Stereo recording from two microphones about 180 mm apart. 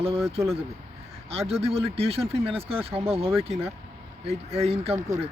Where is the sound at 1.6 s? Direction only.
35° right (ahead or behind).